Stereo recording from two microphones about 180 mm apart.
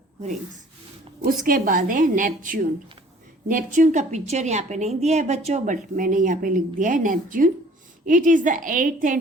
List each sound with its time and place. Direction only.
1.2 s a woman's voice: 50° right (ahead or behind)